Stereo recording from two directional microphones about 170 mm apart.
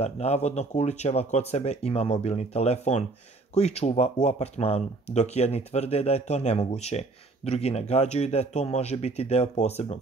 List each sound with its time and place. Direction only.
0.0 s speech: 40° left (ahead or behind)